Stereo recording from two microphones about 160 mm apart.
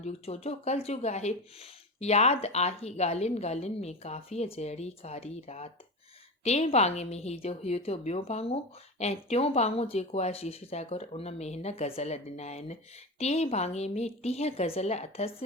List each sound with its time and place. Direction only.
0.0 s a woman's voice: 40° left (ahead or behind)